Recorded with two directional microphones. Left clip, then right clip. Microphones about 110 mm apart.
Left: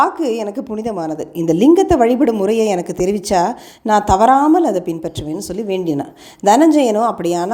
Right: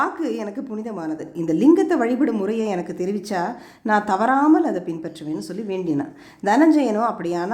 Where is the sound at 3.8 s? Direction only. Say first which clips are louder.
Left 7 dB; 30° left (ahead or behind).